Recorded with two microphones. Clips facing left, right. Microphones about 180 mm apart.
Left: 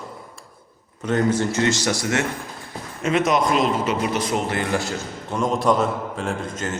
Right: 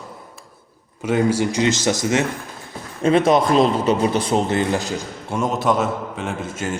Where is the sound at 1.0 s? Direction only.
10° right (ahead or behind).